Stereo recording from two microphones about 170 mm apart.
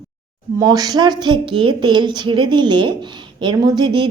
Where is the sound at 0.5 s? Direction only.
20° right (ahead or behind).